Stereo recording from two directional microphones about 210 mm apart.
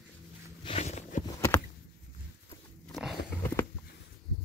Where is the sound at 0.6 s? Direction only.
30° left (ahead or behind).